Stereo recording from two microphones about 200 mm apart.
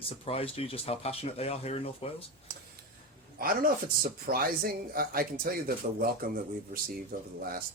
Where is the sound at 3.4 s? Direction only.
45° right (ahead or behind).